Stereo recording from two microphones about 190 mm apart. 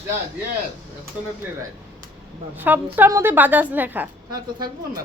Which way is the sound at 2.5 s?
10° right (ahead or behind).